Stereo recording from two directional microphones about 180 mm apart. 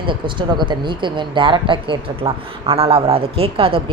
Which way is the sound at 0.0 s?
25° right (ahead or behind).